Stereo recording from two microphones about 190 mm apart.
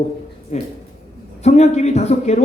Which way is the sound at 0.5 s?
35° left (ahead or behind).